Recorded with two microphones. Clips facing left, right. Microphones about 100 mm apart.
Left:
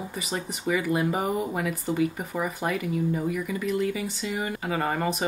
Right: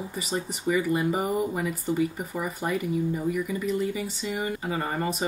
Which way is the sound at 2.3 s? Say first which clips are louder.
Left 2 dB; 50° left (ahead or behind).